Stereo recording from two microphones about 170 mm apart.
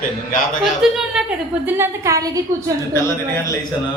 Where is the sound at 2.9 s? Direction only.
15° left (ahead or behind).